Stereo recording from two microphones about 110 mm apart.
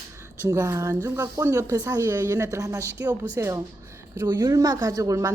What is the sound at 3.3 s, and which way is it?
Speech, 20° right (ahead or behind).